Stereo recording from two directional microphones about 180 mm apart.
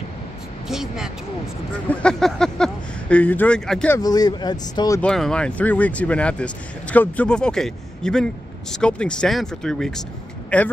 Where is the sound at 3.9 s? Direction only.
20° left (ahead or behind).